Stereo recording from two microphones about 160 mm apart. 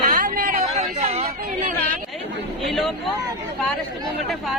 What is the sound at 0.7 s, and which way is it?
Speech, 40° right (ahead or behind).